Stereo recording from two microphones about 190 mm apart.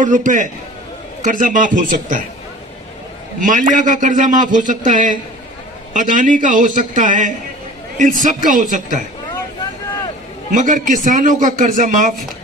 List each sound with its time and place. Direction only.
0.0 s a man's voice: 40° right (ahead or behind)
3.3 s a man's voice: 45° right (ahead or behind)
10.5 s a man's voice: 40° right (ahead or behind)